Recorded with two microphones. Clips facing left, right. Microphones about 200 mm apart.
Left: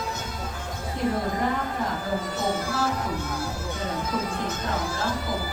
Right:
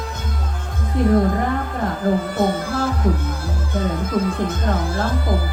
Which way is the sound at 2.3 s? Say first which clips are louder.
Right 7 dB; 55° right (ahead or behind).